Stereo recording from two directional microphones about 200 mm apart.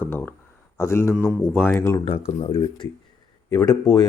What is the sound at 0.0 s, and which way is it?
Speech, 10° left (ahead or behind).